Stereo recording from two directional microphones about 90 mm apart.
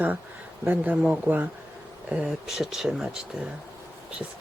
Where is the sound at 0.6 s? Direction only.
20° right (ahead or behind).